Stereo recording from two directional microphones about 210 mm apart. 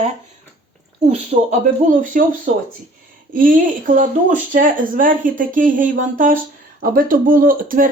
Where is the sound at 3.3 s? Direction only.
40° right (ahead or behind).